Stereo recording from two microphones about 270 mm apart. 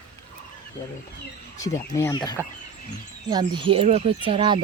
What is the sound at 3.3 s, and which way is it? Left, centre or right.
Speech, centre.